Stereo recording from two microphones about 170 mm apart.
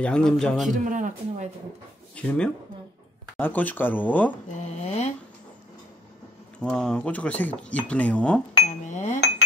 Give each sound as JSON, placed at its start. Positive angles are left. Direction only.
{"t": 0.0, "sound": "a man's voice", "side_deg": 5}
{"t": 0.8, "sound": "speech", "side_deg": -50}
{"t": 2.1, "sound": "a man's voice", "side_deg": 5}
{"t": 4.5, "sound": "speech", "side_deg": 40}
{"t": 6.6, "sound": "speech", "side_deg": 5}
{"t": 8.6, "sound": "music", "side_deg": 45}